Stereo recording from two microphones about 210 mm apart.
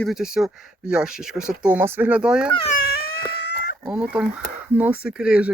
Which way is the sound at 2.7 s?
45° left (ahead or behind).